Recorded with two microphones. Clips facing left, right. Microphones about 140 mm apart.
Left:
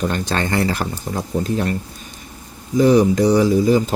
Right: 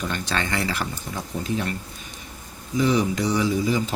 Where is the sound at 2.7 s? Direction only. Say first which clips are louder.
Left 8 dB; 45° left (ahead or behind).